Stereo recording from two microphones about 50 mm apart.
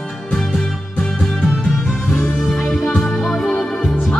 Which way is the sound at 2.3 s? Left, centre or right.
Centre.